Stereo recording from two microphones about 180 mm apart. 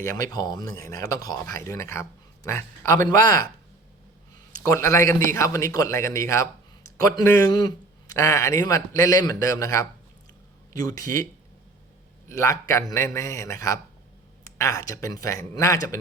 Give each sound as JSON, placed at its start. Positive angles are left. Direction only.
{"t": 0.2, "sound": "a man's voice", "side_deg": 20}
{"t": 4.6, "sound": "a man's voice", "side_deg": 15}
{"t": 12.3, "sound": "a man's voice", "side_deg": 15}